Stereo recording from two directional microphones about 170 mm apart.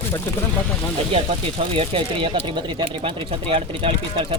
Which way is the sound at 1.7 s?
30° right (ahead or behind).